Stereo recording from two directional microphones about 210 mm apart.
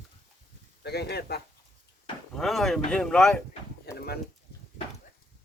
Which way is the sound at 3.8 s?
50° left (ahead or behind).